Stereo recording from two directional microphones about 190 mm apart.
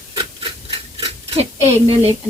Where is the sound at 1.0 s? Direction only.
35° right (ahead or behind).